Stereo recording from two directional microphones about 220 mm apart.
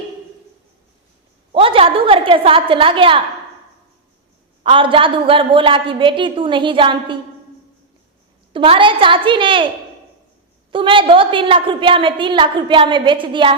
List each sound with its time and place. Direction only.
1.5 s a woman's voice: 25° right (ahead or behind)
4.6 s a woman's voice: 25° right (ahead or behind)
8.5 s a woman's voice: 25° right (ahead or behind)
10.7 s a woman's voice: 25° right (ahead or behind)